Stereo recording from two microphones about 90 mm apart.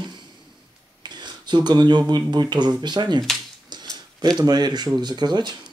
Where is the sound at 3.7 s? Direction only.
50° right (ahead or behind).